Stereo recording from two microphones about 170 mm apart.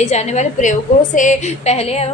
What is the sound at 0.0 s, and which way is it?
A woman's voice, 40° left (ahead or behind).